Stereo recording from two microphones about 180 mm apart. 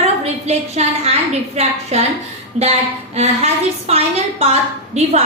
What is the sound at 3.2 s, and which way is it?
A woman's voice, 35° right (ahead or behind).